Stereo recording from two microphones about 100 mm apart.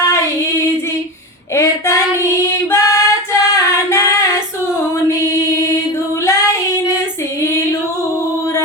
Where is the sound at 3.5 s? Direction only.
30° left (ahead or behind).